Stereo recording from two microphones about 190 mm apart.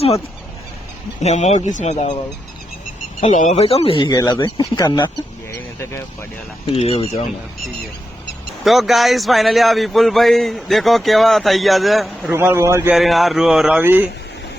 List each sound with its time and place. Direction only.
1.2 s speech: 35° left (ahead or behind)
3.2 s speech: 40° left (ahead or behind); by 5.1 s 25° left (ahead or behind)
6.7 s speech: 30° left (ahead or behind)
8.6 s speech: centre (ahead or behind)
12.3 s a man's voice: 10° right (ahead or behind)
13.0 s speech: centre (ahead or behind)